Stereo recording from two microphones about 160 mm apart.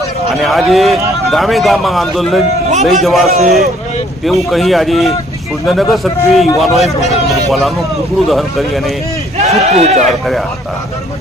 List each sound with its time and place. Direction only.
0.3 s speech: centre (ahead or behind)
8.3 s speech: centre (ahead or behind)
9.4 s speech: 40° right (ahead or behind)
10.1 s speech: centre (ahead or behind)